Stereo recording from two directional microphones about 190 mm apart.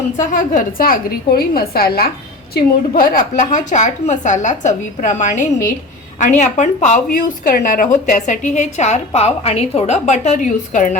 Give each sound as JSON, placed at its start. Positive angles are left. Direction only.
{"t": 0.2, "sound": "a woman's voice", "side_deg": 45}